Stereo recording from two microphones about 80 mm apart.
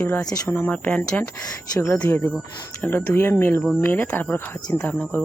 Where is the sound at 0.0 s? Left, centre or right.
Centre.